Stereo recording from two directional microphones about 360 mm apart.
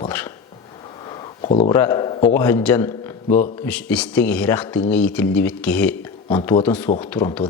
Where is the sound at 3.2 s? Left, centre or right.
Left.